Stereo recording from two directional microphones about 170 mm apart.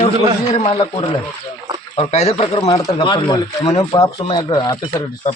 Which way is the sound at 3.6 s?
35° left (ahead or behind).